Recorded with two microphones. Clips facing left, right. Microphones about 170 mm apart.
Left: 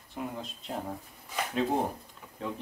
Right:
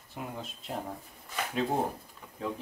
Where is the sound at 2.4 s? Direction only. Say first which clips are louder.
Right 1 dB; centre (ahead or behind).